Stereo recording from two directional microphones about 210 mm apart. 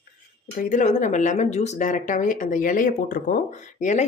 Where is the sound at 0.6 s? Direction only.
40° left (ahead or behind).